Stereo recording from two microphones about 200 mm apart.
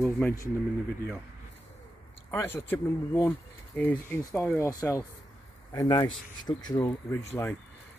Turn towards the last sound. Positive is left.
turn(degrees=10)  # may be behind; listen again after turning